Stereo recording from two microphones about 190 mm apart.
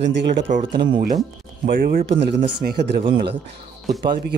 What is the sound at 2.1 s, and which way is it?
Speech, 65° right (ahead or behind).